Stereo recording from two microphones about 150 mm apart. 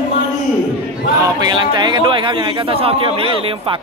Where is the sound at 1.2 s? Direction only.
30° right (ahead or behind).